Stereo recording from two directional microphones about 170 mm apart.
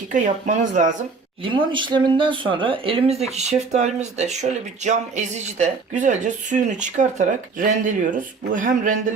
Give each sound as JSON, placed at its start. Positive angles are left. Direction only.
{"t": 0.1, "sound": "speech", "side_deg": -50}
{"t": 1.5, "sound": "speech", "side_deg": -30}